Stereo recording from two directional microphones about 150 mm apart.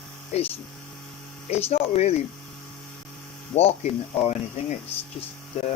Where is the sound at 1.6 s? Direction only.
45° left (ahead or behind).